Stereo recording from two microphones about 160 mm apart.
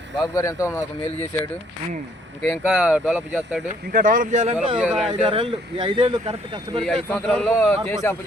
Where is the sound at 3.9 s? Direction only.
60° right (ahead or behind).